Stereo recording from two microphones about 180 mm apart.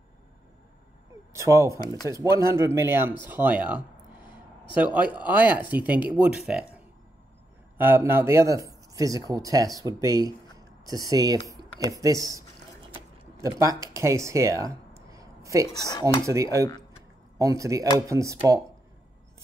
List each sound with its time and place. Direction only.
1.3 s speech: 15° right (ahead or behind)
7.7 s speech: 10° right (ahead or behind)
15.8 s dishes: 20° left (ahead or behind)
17.4 s speech: 20° right (ahead or behind)